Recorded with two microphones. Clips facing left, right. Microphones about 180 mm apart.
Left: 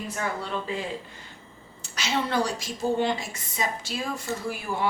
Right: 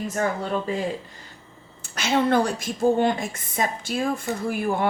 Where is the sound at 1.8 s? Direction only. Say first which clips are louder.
Right 6 dB; 55° right (ahead or behind).